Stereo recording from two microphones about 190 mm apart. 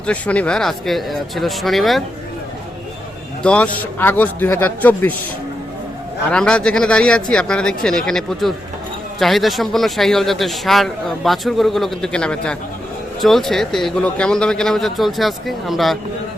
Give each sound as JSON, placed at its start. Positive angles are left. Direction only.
{"t": 0.0, "sound": "a man's voice", "side_deg": 5}
{"t": 3.4, "sound": "a man's voice", "side_deg": 5}
{"t": 6.3, "sound": "a man's voice", "side_deg": 5}